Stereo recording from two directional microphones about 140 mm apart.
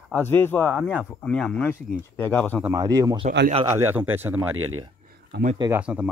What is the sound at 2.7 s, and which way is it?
Speech, 25° right (ahead or behind).